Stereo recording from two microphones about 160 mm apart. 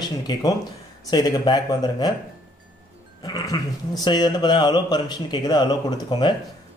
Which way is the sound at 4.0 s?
25° left (ahead or behind).